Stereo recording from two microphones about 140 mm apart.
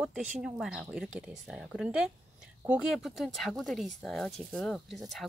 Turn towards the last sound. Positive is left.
turn(degrees=0)  # may be behind; listen again after turning